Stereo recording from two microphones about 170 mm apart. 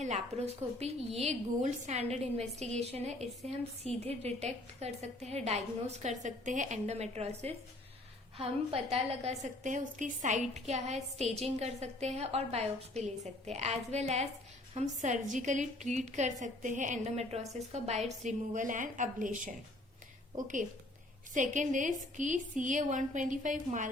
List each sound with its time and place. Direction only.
0.0 s a woman's voice: 40° right (ahead or behind)